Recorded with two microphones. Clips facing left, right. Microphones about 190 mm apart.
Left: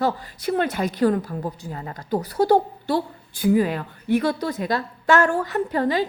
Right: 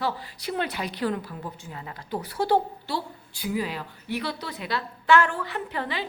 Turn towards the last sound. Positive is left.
turn(degrees=40)  # may be behind; listen again after turning